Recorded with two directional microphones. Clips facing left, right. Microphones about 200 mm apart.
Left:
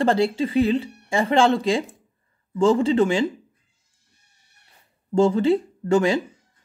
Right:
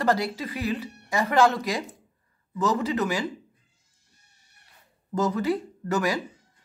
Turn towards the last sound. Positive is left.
turn(degrees=25)  # may be behind; listen again after turning